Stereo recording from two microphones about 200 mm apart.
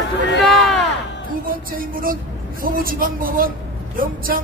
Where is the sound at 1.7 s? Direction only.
45° right (ahead or behind).